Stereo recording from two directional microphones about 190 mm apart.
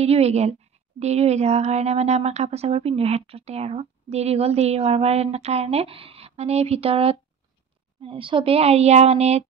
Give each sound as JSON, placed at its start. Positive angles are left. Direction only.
{"t": 0.0, "sound": "a woman's voice", "side_deg": -35}